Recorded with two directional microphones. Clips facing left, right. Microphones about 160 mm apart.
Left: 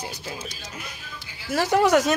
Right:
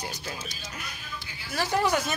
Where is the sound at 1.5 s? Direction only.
75° left (ahead or behind).